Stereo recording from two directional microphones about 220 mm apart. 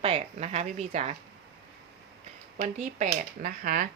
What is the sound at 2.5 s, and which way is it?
Speech, 35° right (ahead or behind).